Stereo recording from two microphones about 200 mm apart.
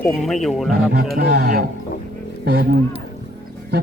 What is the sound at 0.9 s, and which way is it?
Speech, 50° right (ahead or behind).